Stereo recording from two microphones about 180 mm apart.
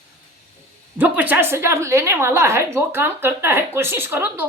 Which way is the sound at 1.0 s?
10° right (ahead or behind).